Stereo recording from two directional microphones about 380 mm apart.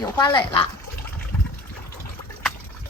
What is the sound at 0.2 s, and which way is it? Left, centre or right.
Speech, centre.